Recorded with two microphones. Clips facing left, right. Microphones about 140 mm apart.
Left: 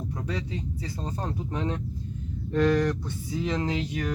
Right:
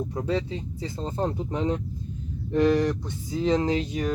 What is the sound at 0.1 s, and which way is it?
Speech, 25° right (ahead or behind).